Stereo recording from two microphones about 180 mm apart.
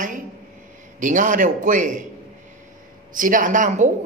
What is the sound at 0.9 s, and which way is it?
A woman's voice, 45° right (ahead or behind).